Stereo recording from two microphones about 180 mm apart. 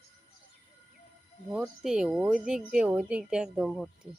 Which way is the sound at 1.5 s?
5° right (ahead or behind).